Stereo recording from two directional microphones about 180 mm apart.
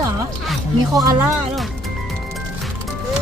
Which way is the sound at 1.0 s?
15° right (ahead or behind).